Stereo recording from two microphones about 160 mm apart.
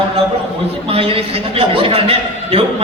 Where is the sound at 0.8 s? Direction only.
35° right (ahead or behind).